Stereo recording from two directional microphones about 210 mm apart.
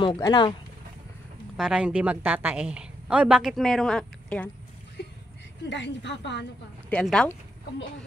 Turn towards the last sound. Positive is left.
turn(degrees=5)  # may be behind; listen again after turning